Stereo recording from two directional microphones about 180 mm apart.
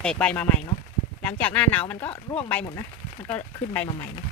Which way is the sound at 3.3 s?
10° left (ahead or behind).